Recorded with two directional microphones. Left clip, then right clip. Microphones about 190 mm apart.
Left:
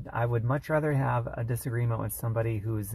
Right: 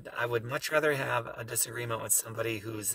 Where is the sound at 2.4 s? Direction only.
30° right (ahead or behind).